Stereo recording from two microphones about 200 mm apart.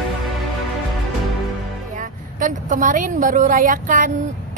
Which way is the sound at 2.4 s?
40° right (ahead or behind).